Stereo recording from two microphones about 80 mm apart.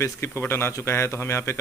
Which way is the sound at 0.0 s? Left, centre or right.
Left.